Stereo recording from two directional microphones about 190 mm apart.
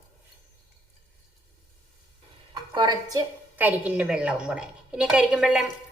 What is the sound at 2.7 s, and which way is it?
A woman's voice, 25° right (ahead or behind).